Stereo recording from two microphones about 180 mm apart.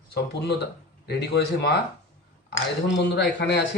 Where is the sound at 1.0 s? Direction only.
65° left (ahead or behind).